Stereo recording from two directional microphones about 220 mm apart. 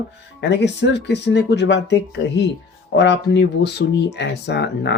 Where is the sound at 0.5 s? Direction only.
50° left (ahead or behind).